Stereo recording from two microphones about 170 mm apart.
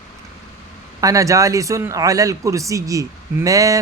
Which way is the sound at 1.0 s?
20° right (ahead or behind).